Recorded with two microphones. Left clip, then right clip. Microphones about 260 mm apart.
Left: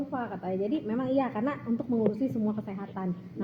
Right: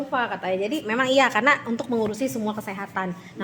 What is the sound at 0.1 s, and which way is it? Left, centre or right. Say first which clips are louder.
A woman's voice: right 9 dB; right.